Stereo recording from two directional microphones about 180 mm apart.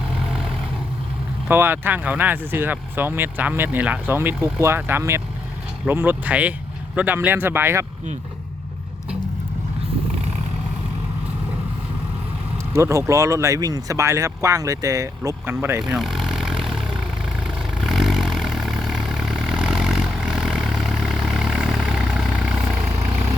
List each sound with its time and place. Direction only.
0.3 s vehicle: 5° right (ahead or behind)
1.5 s speech: 10° right (ahead or behind)
12.7 s speech: 15° right (ahead or behind)
15.8 s vehicle: centre (ahead or behind)